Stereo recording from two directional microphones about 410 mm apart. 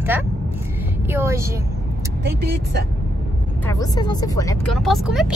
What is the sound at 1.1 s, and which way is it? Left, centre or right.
Speech, centre.